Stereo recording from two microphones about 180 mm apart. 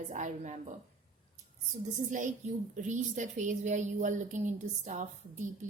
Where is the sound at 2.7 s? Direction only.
45° right (ahead or behind).